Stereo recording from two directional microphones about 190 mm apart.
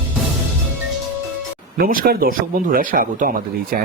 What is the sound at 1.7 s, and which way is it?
Speech, 50° right (ahead or behind).